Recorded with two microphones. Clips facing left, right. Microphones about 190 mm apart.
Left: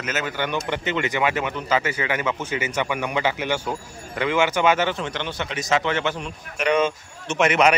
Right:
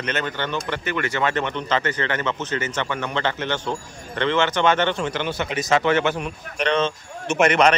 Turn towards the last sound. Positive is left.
turn(degrees=5)  # may be behind; listen again after turning